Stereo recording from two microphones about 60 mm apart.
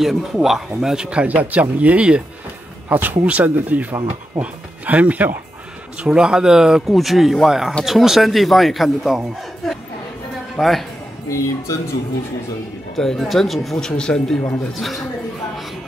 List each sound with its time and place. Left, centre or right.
0.0 s speech: centre
1.2 s speech: right
2.9 s speech: right
6.0 s speech: centre
10.6 s speech: centre
11.2 s speech: left
12.9 s speech: centre